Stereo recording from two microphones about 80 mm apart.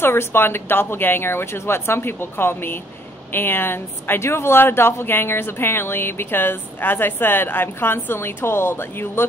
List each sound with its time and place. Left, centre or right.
0.0 s a woman's voice: left